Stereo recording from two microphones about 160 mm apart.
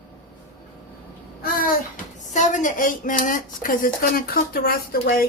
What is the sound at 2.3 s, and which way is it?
Speech, 50° left (ahead or behind).